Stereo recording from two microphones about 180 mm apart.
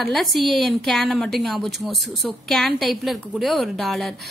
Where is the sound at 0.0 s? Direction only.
Centre (ahead or behind).